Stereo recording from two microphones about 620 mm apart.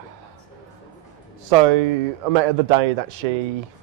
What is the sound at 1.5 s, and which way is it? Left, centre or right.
A man's voice, right.